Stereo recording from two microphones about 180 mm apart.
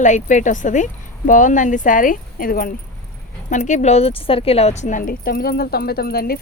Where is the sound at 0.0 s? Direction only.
45° left (ahead or behind).